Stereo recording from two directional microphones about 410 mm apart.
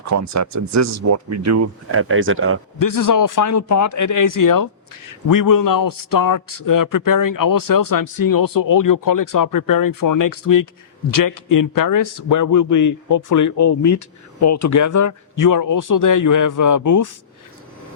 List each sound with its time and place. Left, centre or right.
0.0 s speech: right
2.7 s a man's voice: left